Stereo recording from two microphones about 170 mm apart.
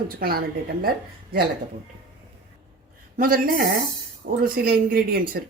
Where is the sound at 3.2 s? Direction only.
55° right (ahead or behind).